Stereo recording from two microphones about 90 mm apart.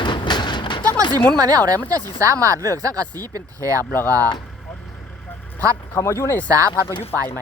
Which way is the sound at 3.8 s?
25° left (ahead or behind).